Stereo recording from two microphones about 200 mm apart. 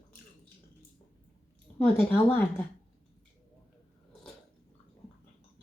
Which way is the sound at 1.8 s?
5° left (ahead or behind).